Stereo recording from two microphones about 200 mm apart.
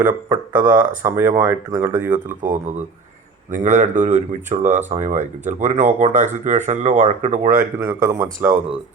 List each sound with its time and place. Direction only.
0.0 s speech: 10° right (ahead or behind)
2.4 s speech: 40° right (ahead or behind)
7.5 s speech: 10° right (ahead or behind)